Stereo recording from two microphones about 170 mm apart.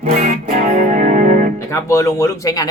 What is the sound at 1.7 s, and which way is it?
Speech, 15° left (ahead or behind).